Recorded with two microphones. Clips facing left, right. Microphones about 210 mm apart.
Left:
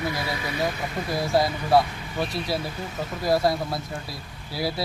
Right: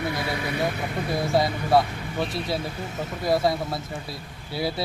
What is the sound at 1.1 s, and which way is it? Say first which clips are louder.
A man's voice: even; centre (ahead or behind).